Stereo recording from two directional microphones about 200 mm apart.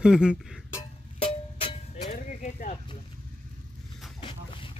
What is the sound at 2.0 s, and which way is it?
Music, 40° left (ahead or behind).